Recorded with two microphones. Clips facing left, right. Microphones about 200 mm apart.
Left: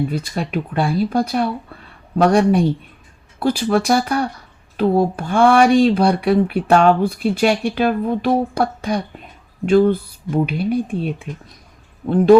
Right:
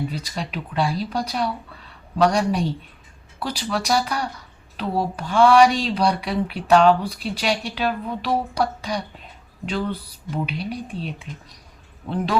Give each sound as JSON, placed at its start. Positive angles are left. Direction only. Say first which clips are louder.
{"t": 0.1, "sound": "speech", "louder": "left 7 dB", "side_deg": 55}